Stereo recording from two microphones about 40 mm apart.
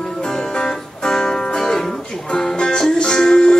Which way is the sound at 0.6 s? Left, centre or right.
Centre.